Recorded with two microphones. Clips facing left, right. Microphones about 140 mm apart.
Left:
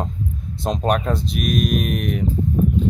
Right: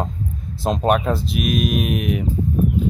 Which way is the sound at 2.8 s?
5° right (ahead or behind).